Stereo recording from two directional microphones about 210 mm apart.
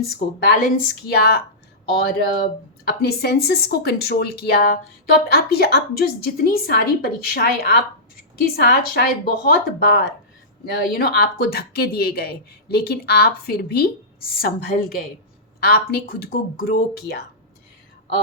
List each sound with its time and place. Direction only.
0.3 s speech: 45° left (ahead or behind)